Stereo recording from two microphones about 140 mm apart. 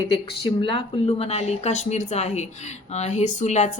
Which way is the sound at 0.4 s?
40° left (ahead or behind).